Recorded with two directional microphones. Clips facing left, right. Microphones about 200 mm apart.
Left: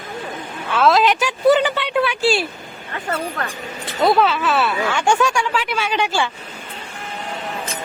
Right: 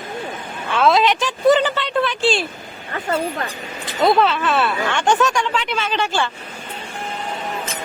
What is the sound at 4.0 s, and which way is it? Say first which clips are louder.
Speech: even; 5° left (ahead or behind).